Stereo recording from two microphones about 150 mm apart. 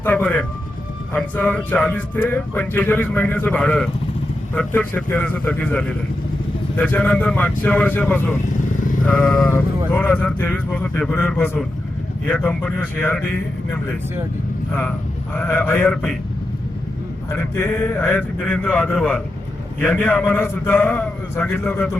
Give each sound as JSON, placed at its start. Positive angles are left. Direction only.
{"t": 0.0, "sound": "a sound", "side_deg": 10}
{"t": 1.1, "sound": "speech", "side_deg": 10}
{"t": 9.0, "sound": "sheep", "side_deg": 5}
{"t": 9.5, "sound": "speech", "side_deg": 10}
{"t": 15.4, "sound": "speech", "side_deg": 15}
{"t": 17.3, "sound": "speech", "side_deg": 15}